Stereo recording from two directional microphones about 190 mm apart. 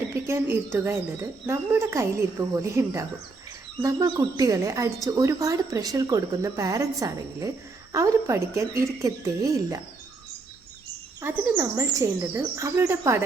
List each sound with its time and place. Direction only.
0.1 s speech: 15° right (ahead or behind)
11.2 s speech: 10° right (ahead or behind)